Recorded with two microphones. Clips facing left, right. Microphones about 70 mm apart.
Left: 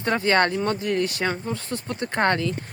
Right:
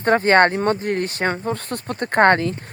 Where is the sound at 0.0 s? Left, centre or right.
Right.